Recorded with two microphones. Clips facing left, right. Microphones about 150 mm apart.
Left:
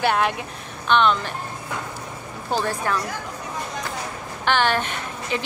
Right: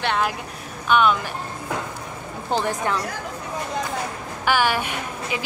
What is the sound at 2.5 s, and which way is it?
Speech, 20° right (ahead or behind).